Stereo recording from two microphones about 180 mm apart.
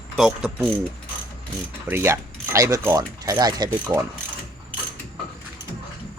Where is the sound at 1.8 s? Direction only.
15° right (ahead or behind).